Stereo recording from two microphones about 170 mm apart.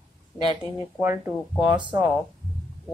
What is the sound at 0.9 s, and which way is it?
Speech, 15° right (ahead or behind).